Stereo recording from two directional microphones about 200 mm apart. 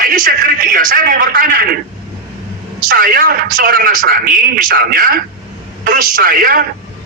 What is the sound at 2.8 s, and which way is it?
A man's voice, 45° right (ahead or behind).